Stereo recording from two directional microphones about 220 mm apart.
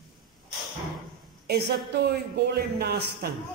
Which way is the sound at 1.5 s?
45° right (ahead or behind).